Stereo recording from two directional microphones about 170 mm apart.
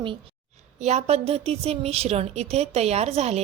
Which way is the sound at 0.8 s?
40° right (ahead or behind).